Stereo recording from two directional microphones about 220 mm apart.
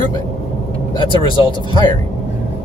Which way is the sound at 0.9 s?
20° left (ahead or behind).